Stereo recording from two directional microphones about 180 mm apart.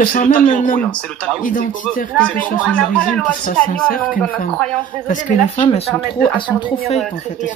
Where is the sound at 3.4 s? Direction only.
50° left (ahead or behind).